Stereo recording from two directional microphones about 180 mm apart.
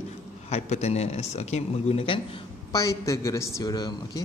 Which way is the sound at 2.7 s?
20° left (ahead or behind).